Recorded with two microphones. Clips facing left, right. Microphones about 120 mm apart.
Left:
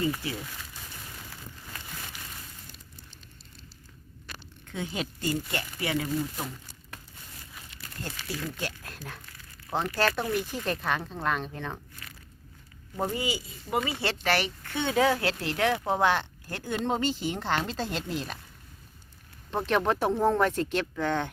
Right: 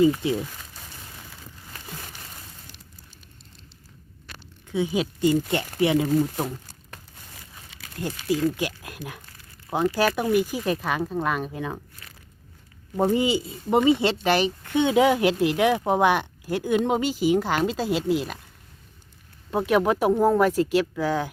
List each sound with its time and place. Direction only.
0.0 s speech: 20° right (ahead or behind)
4.6 s speech: 10° right (ahead or behind)
5.3 s speech: 20° right (ahead or behind)
6.1 s speech: 40° right (ahead or behind)
8.0 s speech: 15° right (ahead or behind)
13.0 s speech: 25° right (ahead or behind); by 18.3 s 5° right (ahead or behind)
19.5 s speech: 10° right (ahead or behind)